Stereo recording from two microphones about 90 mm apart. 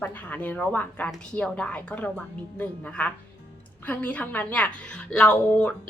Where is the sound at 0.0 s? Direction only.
15° left (ahead or behind).